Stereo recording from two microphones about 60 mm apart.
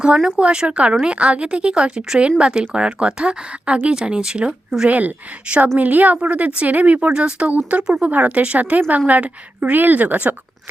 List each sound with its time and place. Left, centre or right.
0.0 s a woman's voice: centre
4.9 s a woman's voice: right